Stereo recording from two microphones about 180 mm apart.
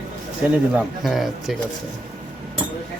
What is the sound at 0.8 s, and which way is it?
Speech, centre (ahead or behind).